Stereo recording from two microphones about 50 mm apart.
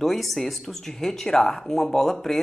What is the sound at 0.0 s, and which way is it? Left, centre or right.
Speech, centre.